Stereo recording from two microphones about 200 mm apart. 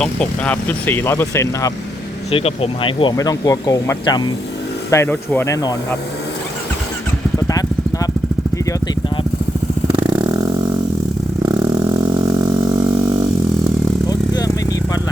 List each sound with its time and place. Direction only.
0.0 s speech: 5° left (ahead or behind)
2.3 s speech: 30° left (ahead or behind); by 6.0 s 15° left (ahead or behind)
9.8 s a sound: 20° right (ahead or behind)
11.4 s vehicle: 20° right (ahead or behind)
14.1 s vehicle: 20° left (ahead or behind)